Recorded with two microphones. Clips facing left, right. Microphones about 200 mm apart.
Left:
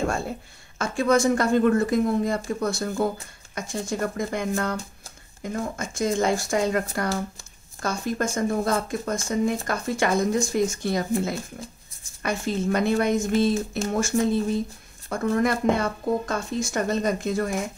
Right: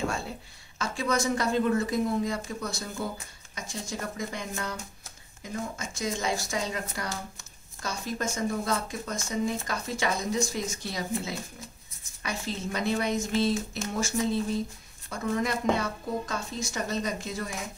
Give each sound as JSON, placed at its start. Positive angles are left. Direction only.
{"t": 0.0, "sound": "speech", "side_deg": 50}